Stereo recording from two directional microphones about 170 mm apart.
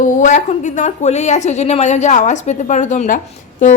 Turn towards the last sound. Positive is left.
turn(degrees=50)  # may be behind; listen again after turning